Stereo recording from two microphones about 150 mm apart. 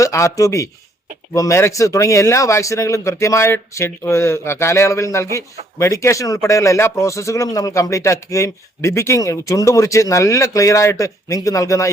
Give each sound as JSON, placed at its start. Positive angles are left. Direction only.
{"t": 0.0, "sound": "a man's voice", "side_deg": 20}